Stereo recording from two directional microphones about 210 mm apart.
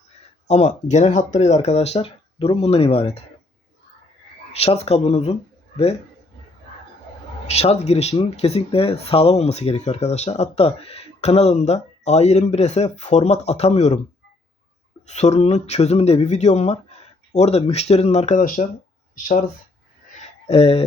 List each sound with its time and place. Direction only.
0.4 s speech: 30° left (ahead or behind)
4.5 s speech: 30° left (ahead or behind)
7.4 s speech: 30° left (ahead or behind)
15.0 s speech: 35° left (ahead or behind)
20.5 s speech: 30° left (ahead or behind)